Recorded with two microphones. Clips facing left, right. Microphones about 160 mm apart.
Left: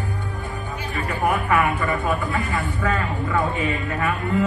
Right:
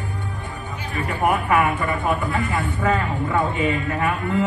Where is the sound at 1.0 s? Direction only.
20° right (ahead or behind).